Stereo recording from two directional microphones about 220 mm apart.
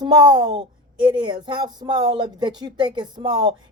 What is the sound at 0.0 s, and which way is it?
Speech, 20° right (ahead or behind).